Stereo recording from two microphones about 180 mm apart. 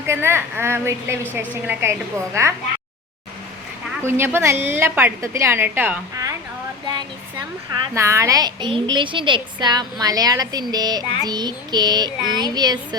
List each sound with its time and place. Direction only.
0.1 s a woman's voice: 15° right (ahead or behind)
4.0 s a woman's voice: 15° right (ahead or behind)
7.9 s speech: 15° right (ahead or behind)